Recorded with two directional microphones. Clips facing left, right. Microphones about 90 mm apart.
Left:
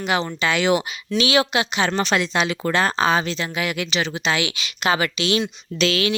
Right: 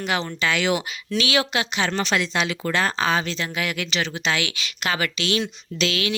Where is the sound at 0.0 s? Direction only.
15° left (ahead or behind).